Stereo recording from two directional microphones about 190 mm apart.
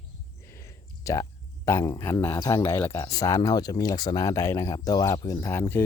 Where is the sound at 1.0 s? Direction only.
15° left (ahead or behind).